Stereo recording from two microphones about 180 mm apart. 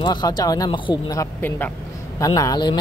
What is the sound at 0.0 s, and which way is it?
Speech, 25° left (ahead or behind).